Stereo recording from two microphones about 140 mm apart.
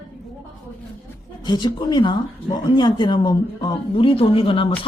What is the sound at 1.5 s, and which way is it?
A woman's voice, 30° left (ahead or behind).